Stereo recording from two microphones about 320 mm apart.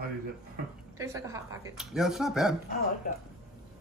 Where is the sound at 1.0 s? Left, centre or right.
Centre.